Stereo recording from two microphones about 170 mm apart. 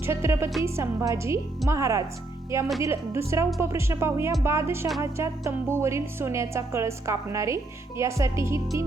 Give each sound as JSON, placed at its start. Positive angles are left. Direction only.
{"t": 0.0, "sound": "speech", "side_deg": -15}